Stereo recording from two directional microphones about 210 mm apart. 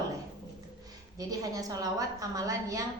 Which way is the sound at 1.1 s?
15° right (ahead or behind).